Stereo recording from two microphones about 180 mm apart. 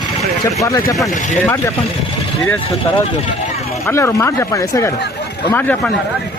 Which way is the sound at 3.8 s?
15° left (ahead or behind).